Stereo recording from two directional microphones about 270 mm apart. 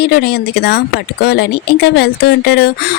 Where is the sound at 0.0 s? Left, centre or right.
Left.